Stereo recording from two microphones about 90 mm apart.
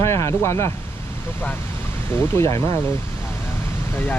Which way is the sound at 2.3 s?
30° left (ahead or behind).